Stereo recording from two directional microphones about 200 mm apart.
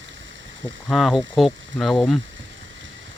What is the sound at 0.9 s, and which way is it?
Speech, centre (ahead or behind).